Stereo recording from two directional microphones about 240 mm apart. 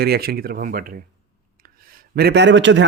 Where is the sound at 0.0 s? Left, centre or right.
Right.